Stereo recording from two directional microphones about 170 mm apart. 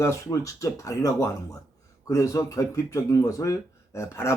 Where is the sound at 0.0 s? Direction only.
20° left (ahead or behind).